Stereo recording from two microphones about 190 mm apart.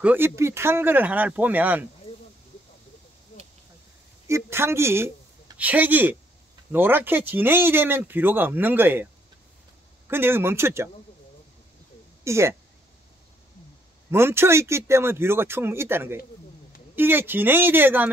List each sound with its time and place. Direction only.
0.0 s speech: 10° right (ahead or behind)
4.4 s speech: 15° right (ahead or behind)
12.3 s speech: 15° right (ahead or behind)
14.1 s speech: 15° right (ahead or behind)